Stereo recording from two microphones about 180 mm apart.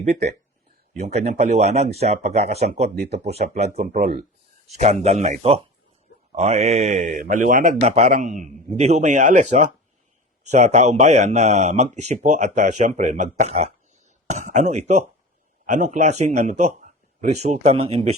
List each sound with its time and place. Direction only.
0.0 s speech: 40° right (ahead or behind)